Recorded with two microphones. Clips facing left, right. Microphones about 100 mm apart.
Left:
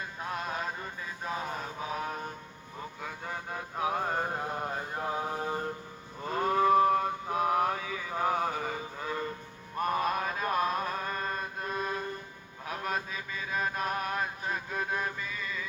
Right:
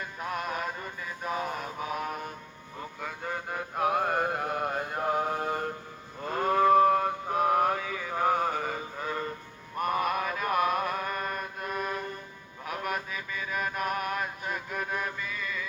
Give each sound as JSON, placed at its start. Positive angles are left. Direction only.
{"t": 0.2, "sound": "music", "side_deg": 30}
{"t": 1.5, "sound": "a sound", "side_deg": 30}
{"t": 3.8, "sound": "mantra", "side_deg": -60}
{"t": 6.2, "sound": "mantra", "side_deg": -40}
{"t": 10.0, "sound": "mantra", "side_deg": 35}